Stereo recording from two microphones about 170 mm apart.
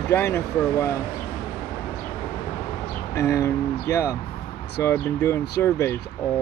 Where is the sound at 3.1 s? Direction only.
15° left (ahead or behind).